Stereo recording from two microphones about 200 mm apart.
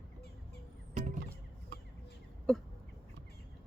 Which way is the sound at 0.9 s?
40° right (ahead or behind).